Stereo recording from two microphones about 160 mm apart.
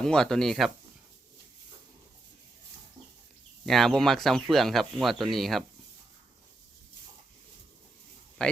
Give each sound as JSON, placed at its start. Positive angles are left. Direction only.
{"t": 0.0, "sound": "speech", "side_deg": 5}
{"t": 3.7, "sound": "speech", "side_deg": 0}
{"t": 8.4, "sound": "speech", "side_deg": 5}